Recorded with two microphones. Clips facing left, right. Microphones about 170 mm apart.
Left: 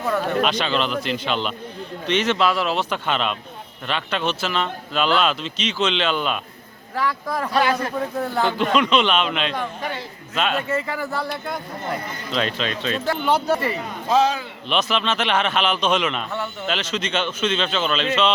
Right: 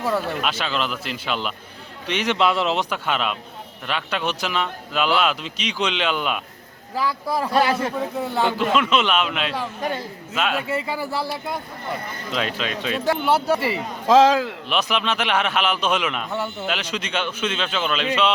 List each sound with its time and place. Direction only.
0.4 s a man's voice: 5° right (ahead or behind); by 2.8 s 20° right (ahead or behind)
2.9 s a man's voice: 5° right (ahead or behind)
7.6 s a man's voice: 30° right (ahead or behind)
8.2 s a man's voice: 5° right (ahead or behind)
11.0 s speech: 30° right (ahead or behind)
12.3 s a man's voice: 5° right (ahead or behind)
14.1 s speech: 90° right
14.7 s a man's voice: 10° right (ahead or behind)